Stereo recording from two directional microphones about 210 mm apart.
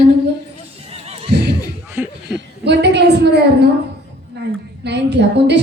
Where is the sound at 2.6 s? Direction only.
55° right (ahead or behind).